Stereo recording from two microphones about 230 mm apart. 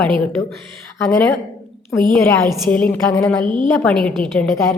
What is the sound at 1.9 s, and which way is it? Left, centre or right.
A woman's voice, centre.